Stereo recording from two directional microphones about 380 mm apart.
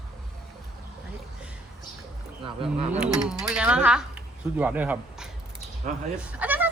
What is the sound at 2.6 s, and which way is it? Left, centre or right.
Speech, centre.